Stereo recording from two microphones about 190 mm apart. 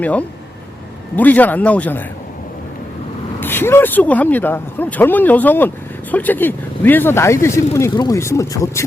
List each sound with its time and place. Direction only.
0.0 s speech: 10° left (ahead or behind)
3.4 s speech: 10° left (ahead or behind)